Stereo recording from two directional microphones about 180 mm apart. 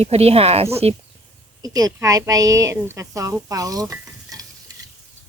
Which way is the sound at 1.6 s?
20° right (ahead or behind).